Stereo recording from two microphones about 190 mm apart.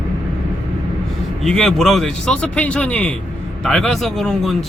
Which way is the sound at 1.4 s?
Centre (ahead or behind).